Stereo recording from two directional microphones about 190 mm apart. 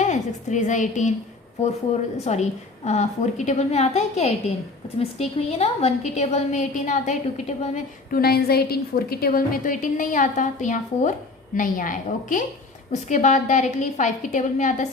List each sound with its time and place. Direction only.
0.0 s a woman's voice: 40° left (ahead or behind)
2.1 s a woman's voice: 35° left (ahead or behind)
8.1 s a woman's voice: 55° left (ahead or behind)